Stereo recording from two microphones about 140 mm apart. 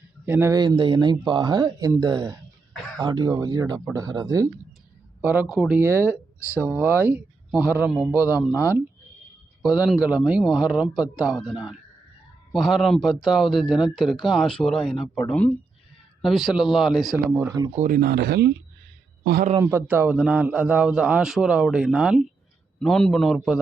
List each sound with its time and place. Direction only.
0.3 s speech: 20° right (ahead or behind)
0.6 s speech: 30° right (ahead or behind)
5.2 s a man's voice: 15° right (ahead or behind)
6.4 s speech: 15° left (ahead or behind)
6.7 s a man's voice: 15° right (ahead or behind)
9.6 s speech: 5° right (ahead or behind)
16.2 s speech: centre (ahead or behind)
17.3 s speech: 25° right (ahead or behind)
17.7 s speech: 80° right
19.6 s a man's voice: 15° right (ahead or behind); by 23.6 s centre (ahead or behind)